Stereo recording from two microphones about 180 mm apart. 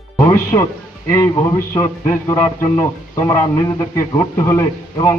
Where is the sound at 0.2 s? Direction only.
15° left (ahead or behind).